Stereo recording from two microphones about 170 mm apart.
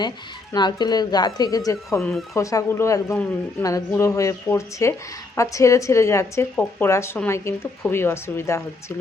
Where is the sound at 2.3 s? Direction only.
20° left (ahead or behind).